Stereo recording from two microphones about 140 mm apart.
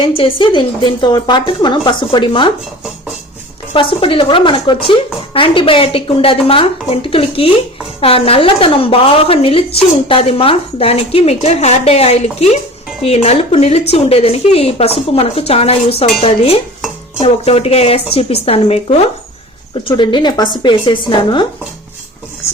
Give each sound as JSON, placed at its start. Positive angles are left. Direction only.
{"t": 0.2, "sound": "speech", "side_deg": 35}
{"t": 3.7, "sound": "a woman's voice", "side_deg": 40}
{"t": 20.0, "sound": "speech", "side_deg": 30}